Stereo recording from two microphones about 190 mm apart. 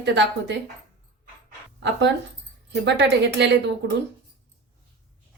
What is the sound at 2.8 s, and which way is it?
A woman's voice, 60° right (ahead or behind).